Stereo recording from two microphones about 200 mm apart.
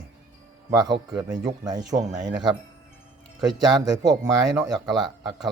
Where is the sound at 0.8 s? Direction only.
20° right (ahead or behind).